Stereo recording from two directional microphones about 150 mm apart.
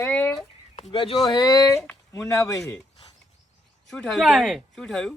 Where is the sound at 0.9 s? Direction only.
35° left (ahead or behind); by 2.7 s 20° left (ahead or behind).